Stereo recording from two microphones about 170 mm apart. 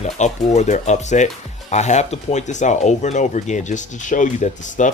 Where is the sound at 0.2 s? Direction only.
45° left (ahead or behind).